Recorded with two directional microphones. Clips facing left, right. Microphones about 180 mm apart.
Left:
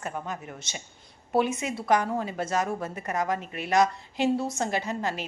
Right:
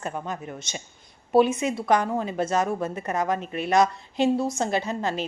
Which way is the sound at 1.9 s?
20° right (ahead or behind).